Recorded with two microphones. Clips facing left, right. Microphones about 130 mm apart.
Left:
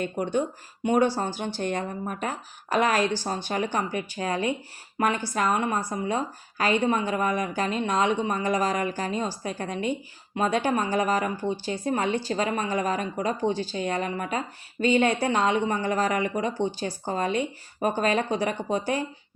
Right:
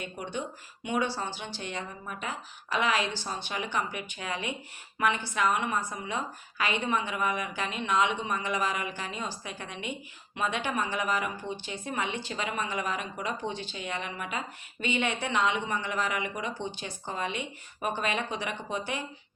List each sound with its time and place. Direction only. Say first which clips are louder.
0.0 s a woman's voice: left 9 dB; 45° left (ahead or behind)